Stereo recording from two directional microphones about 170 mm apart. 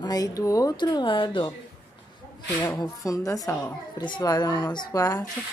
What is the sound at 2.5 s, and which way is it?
A woman's voice, 10° left (ahead or behind).